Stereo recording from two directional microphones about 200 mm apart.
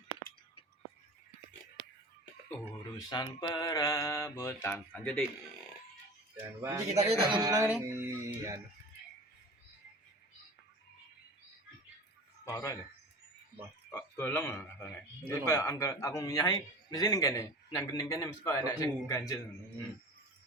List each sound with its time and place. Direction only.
3.0 s a man's voice: 20° left (ahead or behind)
6.6 s speech: 15° right (ahead or behind)
6.9 s speech: 30° right (ahead or behind); by 8.6 s 10° right (ahead or behind)
12.5 s a man's voice: 10° left (ahead or behind)
13.9 s a man's voice: 10° left (ahead or behind)